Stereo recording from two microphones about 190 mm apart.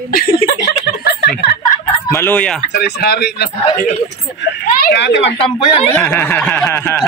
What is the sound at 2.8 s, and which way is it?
Speech, 55° left (ahead or behind).